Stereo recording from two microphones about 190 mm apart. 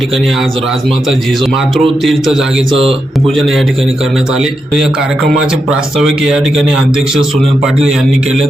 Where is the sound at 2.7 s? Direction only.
30° right (ahead or behind).